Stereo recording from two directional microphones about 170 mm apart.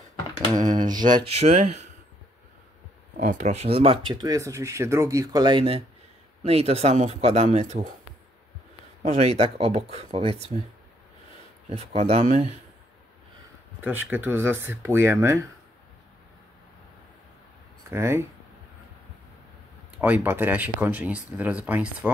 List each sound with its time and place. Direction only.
0.7 s speech: 25° right (ahead or behind)
1.4 s speech: 40° right (ahead or behind)
3.2 s speech: 45° right (ahead or behind)
9.0 s speech: 40° right (ahead or behind)
11.7 s speech: 40° right (ahead or behind)
13.7 s speech: 10° right (ahead or behind)
17.9 s speech: 15° right (ahead or behind)
20.0 s speech: 10° right (ahead or behind)